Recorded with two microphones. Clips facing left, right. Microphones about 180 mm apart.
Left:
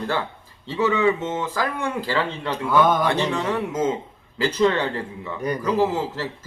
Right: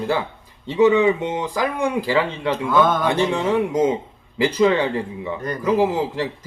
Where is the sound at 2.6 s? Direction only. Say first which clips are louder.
Even; 10° left (ahead or behind).